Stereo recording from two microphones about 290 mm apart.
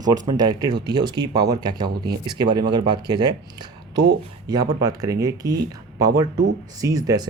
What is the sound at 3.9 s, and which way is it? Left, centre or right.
Speech, right.